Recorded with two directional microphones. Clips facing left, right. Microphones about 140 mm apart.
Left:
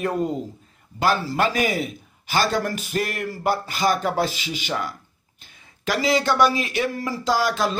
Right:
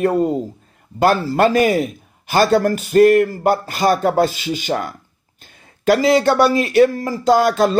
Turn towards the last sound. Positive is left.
turn(degrees=-45)  # may be behind; listen again after turning